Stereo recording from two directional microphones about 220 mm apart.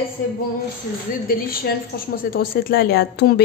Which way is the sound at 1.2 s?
40° left (ahead or behind).